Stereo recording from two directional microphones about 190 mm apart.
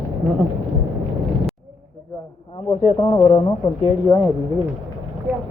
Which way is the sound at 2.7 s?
30° left (ahead or behind).